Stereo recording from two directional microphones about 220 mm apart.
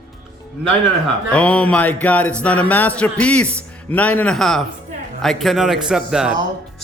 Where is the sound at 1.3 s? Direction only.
5° left (ahead or behind).